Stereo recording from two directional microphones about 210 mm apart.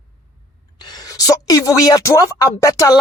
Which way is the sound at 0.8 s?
20° left (ahead or behind).